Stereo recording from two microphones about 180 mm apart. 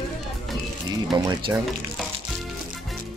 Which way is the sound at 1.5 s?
15° right (ahead or behind).